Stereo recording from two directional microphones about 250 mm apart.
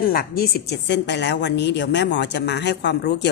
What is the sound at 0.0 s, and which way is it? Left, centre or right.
A woman's voice, left.